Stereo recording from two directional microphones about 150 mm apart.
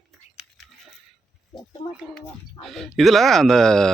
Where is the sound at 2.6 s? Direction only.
Centre (ahead or behind).